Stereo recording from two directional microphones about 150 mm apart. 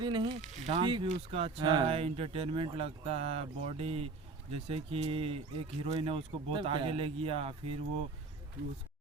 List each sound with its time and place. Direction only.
0.0 s speech: 30° right (ahead or behind)